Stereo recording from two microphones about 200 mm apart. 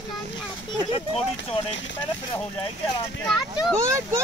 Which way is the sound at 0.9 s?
30° left (ahead or behind).